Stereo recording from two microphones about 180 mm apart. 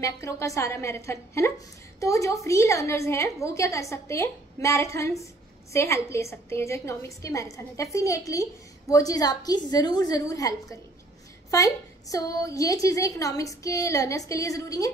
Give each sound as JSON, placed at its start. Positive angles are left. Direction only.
{"t": 0.0, "sound": "a woman's voice", "side_deg": 15}